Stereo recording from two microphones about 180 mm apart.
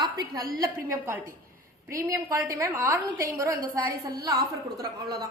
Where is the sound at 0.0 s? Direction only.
25° right (ahead or behind).